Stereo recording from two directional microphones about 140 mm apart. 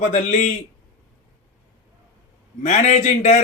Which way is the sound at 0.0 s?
60° left (ahead or behind).